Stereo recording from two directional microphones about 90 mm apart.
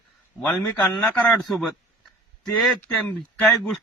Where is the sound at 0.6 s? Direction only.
15° left (ahead or behind).